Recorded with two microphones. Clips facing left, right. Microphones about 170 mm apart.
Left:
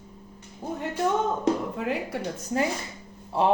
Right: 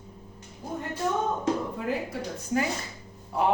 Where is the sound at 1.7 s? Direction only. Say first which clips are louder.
Left 1 dB; 75° left (ahead or behind).